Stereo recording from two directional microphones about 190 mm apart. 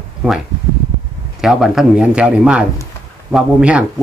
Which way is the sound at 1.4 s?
5° right (ahead or behind).